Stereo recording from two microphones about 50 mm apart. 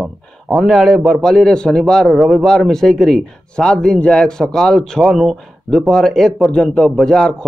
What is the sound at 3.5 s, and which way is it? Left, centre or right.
Speech, centre.